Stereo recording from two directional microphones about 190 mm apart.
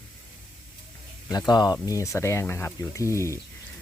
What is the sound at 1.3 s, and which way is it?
Speech, 20° left (ahead or behind).